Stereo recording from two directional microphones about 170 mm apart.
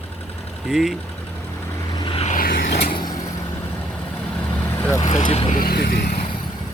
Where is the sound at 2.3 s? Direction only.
65° left (ahead or behind).